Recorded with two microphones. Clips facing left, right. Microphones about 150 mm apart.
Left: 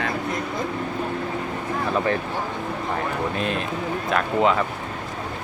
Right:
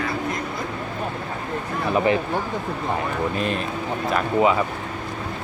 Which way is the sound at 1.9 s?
15° right (ahead or behind).